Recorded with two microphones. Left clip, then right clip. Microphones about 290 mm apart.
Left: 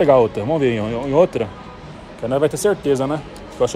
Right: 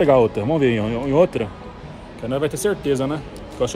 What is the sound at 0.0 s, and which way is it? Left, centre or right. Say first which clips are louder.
Speech: left 2 dB; centre.